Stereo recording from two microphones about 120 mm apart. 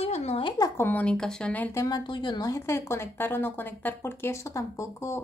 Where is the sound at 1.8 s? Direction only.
35° left (ahead or behind).